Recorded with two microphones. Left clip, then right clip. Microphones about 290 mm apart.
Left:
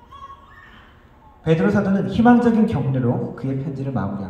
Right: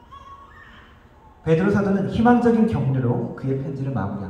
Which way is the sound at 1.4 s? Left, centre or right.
Left.